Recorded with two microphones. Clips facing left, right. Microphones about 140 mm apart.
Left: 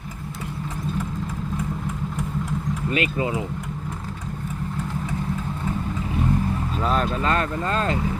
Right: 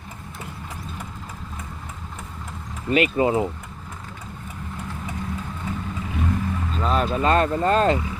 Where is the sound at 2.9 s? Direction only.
30° right (ahead or behind).